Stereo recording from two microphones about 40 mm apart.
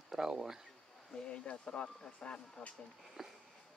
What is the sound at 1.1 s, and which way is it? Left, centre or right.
Speech, left.